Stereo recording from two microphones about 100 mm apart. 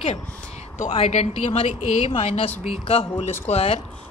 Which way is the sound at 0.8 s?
80° left.